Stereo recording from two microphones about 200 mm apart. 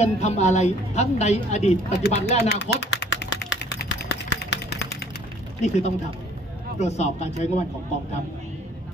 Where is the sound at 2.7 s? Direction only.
55° left (ahead or behind).